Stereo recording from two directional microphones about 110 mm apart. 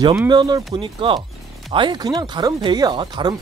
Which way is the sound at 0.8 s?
50° right (ahead or behind).